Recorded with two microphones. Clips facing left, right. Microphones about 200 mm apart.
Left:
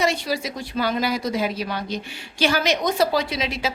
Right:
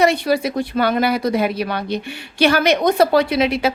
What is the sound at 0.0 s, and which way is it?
Speech, 60° right (ahead or behind).